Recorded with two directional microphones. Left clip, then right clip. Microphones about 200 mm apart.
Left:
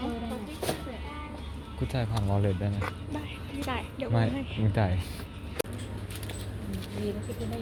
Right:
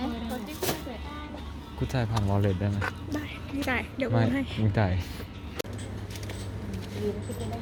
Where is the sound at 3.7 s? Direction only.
55° right (ahead or behind).